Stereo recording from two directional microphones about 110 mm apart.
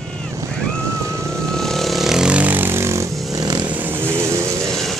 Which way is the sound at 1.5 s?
5° left (ahead or behind).